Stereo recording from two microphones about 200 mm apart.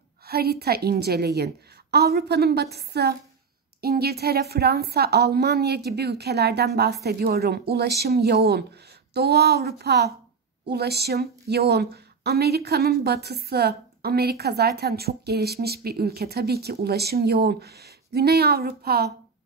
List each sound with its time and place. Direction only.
0.3 s a woman's voice: 50° right (ahead or behind)